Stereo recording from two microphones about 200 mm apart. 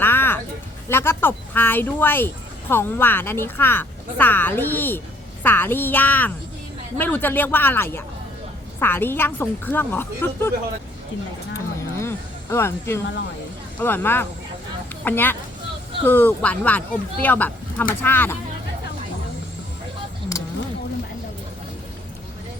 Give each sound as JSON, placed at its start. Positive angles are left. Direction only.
{"t": 0.0, "sound": "music", "side_deg": 10}
{"t": 0.9, "sound": "speech", "side_deg": 10}
{"t": 11.9, "sound": "speech", "side_deg": 15}
{"t": 20.3, "sound": "a sound", "side_deg": 15}